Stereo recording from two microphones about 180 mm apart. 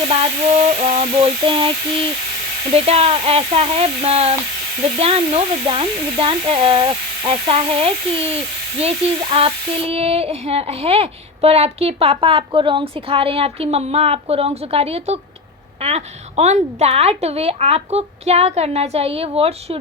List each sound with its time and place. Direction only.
0.1 s speech: 35° right (ahead or behind)